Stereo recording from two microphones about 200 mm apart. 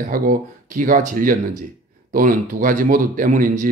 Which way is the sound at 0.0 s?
45° right (ahead or behind).